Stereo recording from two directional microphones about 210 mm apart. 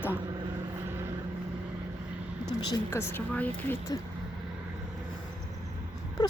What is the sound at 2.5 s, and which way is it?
Speech, 15° left (ahead or behind).